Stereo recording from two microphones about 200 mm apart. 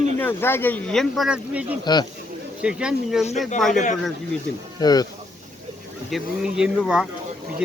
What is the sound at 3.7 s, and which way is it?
Speech, 40° left (ahead or behind).